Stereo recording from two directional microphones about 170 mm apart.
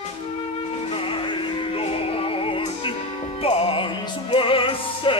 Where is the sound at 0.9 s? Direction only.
30° left (ahead or behind).